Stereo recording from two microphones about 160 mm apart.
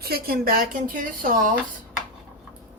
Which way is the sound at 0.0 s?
75° right (ahead or behind).